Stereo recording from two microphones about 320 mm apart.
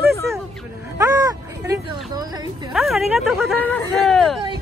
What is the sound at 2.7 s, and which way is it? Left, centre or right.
Speech, centre.